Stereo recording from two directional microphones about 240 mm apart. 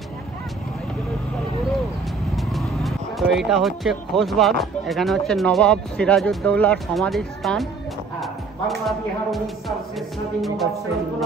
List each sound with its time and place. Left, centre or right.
2.3 s speech: centre